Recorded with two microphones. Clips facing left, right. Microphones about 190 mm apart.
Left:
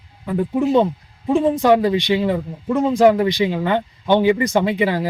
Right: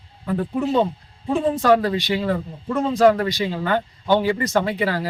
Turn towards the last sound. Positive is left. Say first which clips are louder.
# left 3 dB
turn(degrees=20)  # may be behind; listen again after turning